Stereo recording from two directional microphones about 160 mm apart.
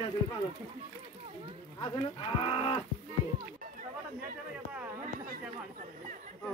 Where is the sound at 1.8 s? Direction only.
35° left (ahead or behind).